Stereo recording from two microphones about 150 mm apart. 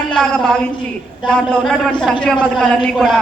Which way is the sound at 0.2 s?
5° left (ahead or behind).